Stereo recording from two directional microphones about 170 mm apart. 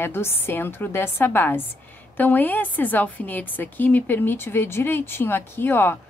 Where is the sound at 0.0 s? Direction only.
15° left (ahead or behind).